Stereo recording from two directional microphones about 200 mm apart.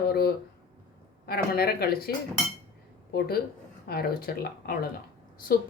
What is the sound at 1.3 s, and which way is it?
Speech, 50° left (ahead or behind).